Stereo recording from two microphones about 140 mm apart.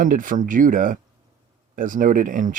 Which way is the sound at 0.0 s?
75° right (ahead or behind).